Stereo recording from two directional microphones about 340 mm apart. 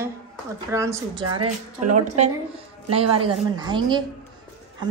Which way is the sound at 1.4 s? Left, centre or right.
Right.